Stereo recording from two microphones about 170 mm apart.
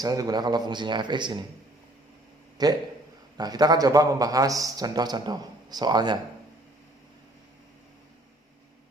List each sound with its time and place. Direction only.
0.0 s a man's voice: 20° right (ahead or behind)
2.6 s a man's voice: 25° right (ahead or behind)